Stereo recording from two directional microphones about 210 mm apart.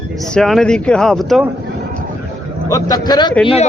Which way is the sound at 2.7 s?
15° left (ahead or behind).